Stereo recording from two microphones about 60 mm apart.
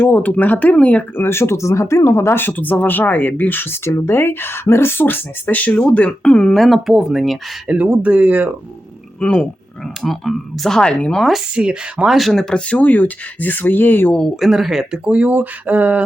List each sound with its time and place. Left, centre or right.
0.0 s speech: left
1.1 s speech: left; by 6.5 s centre
6.5 s speech: centre
7.7 s speech: right
9.2 s speech: centre
10.0 s speech: centre
11.1 s speech: centre
11.5 s speech: centre
12.0 s speech: centre
12.5 s speech: left
14.3 s speech: centre
15.0 s speech: right